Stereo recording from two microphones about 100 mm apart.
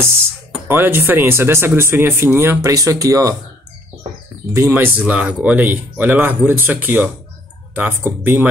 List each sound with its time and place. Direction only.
0.7 s speech: 20° right (ahead or behind)
2.7 s speech: 35° right (ahead or behind)
4.6 s speech: 25° right (ahead or behind)